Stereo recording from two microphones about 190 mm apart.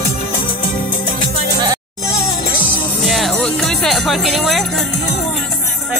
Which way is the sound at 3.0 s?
Centre (ahead or behind).